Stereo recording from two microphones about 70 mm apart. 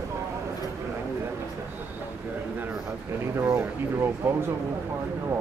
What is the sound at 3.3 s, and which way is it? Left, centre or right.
Speech, right.